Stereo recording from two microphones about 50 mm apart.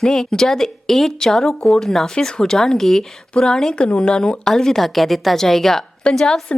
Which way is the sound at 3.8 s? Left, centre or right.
Centre.